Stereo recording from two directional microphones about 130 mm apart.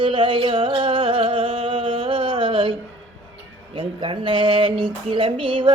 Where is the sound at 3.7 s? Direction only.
40° right (ahead or behind).